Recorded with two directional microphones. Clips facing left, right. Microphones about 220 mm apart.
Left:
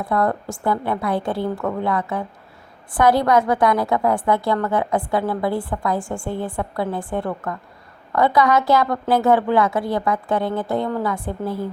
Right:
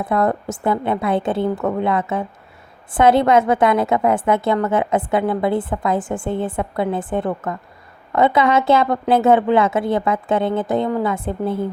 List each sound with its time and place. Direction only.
0.0 s a woman's voice: 20° right (ahead or behind)